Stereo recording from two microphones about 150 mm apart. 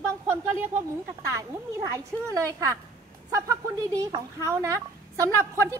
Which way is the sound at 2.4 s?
20° right (ahead or behind).